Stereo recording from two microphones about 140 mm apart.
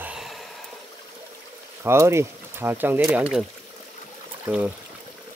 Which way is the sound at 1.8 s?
20° right (ahead or behind).